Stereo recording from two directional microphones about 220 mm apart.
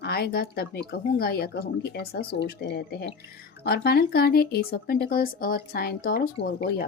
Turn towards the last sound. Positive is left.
turn(degrees=45)  # may be behind; listen again after turning